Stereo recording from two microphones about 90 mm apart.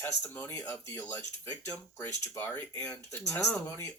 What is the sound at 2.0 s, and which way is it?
Speech, 35° left (ahead or behind).